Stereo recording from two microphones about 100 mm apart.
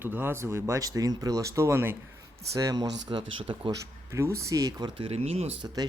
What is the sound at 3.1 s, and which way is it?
Speech, 55° right (ahead or behind).